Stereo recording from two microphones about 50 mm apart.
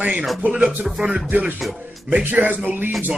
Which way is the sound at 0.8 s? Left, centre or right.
Centre.